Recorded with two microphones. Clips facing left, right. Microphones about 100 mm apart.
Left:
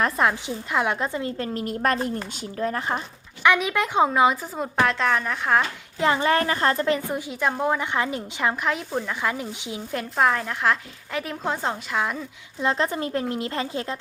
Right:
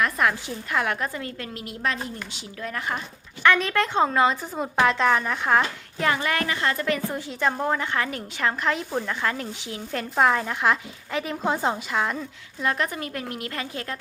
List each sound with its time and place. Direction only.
0.0 s speech: 25° left (ahead or behind)
1.5 s speech: 45° left (ahead or behind)
2.3 s speech: 35° left (ahead or behind)
3.4 s a woman's voice: 10° left (ahead or behind)
4.6 s a woman's voice: centre (ahead or behind)
6.0 s speech: 25° left (ahead or behind)
7.1 s a woman's voice: 10° left (ahead or behind)
7.9 s a woman's voice: 20° left (ahead or behind)
8.7 s a woman's voice: 5° left (ahead or behind)
9.9 s a woman's voice: centre (ahead or behind)
12.5 s speech: 25° left (ahead or behind)